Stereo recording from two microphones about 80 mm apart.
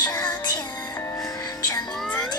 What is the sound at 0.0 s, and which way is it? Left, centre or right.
Music, left.